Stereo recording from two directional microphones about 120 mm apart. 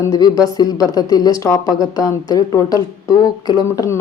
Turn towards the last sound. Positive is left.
turn(degrees=30)  # may be behind; listen again after turning